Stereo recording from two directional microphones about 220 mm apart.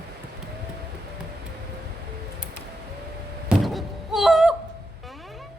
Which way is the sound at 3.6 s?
Centre (ahead or behind).